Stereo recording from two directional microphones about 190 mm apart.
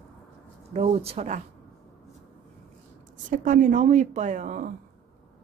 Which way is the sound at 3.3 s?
45° right (ahead or behind).